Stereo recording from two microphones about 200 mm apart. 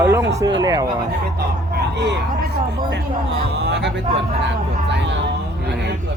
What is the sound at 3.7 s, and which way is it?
Speech, 60° right (ahead or behind).